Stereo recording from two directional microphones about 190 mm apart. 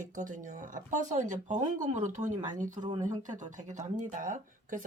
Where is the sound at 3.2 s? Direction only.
40° right (ahead or behind).